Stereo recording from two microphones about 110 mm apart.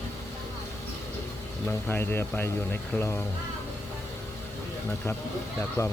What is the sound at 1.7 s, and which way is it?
Speech, 20° left (ahead or behind).